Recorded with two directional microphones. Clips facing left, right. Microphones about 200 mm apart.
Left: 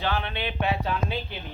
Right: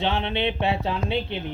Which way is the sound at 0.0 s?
25° right (ahead or behind).